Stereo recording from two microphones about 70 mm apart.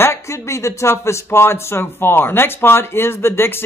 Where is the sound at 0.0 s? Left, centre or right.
Left.